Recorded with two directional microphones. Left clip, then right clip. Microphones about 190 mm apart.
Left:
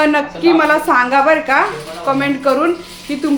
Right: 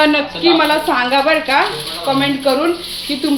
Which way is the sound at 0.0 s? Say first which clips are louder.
Even; 5° left (ahead or behind).